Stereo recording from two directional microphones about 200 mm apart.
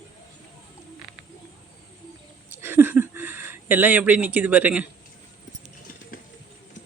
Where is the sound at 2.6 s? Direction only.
10° right (ahead or behind).